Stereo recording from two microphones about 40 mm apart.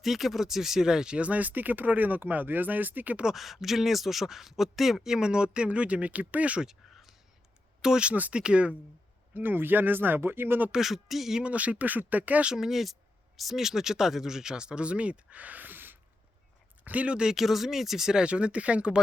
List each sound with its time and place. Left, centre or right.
0.0 s speech: centre
1.2 s speech: right
3.3 s speech: centre; by 6.6 s right
6.9 s whispering: centre
7.8 s speech: centre
9.3 s speech: right
10.7 s speech: centre
11.4 s speech: right
12.5 s speech: centre; by 16.0 s right
16.8 s speech: right
17.1 s speech: right
17.3 s speech: centre
18.2 s speech: right